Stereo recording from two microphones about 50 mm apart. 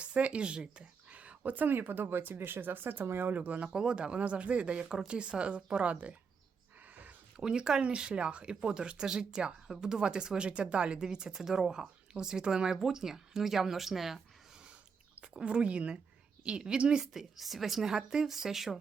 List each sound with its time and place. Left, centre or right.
0.0 s speech: right
3.3 s speech: right
3.8 s speech: centre
6.9 s a sound: right
7.4 s speech: centre
15.1 s speech: right; by 18.8 s centre